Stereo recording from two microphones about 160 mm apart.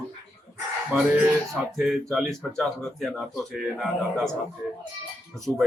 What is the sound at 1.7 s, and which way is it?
Speech, centre (ahead or behind).